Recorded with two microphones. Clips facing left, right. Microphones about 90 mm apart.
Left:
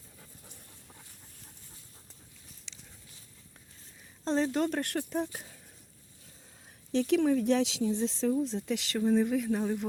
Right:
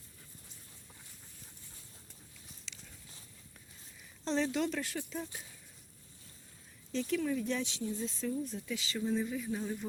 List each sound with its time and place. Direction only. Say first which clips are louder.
2.7 s a sound: even; 20° left (ahead or behind)
4.2 s speech: left 4 dB; 40° left (ahead or behind); by 5.5 s 60° left (ahead or behind)
6.9 s speech: left 8 dB; 65° left (ahead or behind)